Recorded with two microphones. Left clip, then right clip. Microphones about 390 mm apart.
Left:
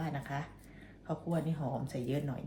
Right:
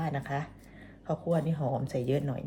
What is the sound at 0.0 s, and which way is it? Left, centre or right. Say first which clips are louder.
Speech: right 6 dB; right.